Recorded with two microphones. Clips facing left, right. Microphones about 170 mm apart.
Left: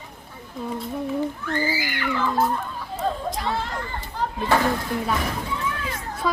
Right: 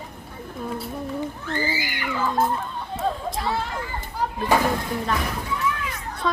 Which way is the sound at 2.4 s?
25° right (ahead or behind).